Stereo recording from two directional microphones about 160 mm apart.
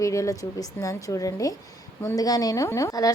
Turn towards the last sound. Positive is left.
turn(degrees=20)  # may be behind; listen again after turning